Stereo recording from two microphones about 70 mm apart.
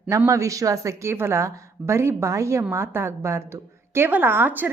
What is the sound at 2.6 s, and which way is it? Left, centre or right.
Speech, right.